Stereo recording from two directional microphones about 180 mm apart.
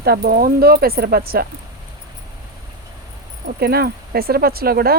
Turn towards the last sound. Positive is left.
turn(degrees=-55)  # may be behind; listen again after turning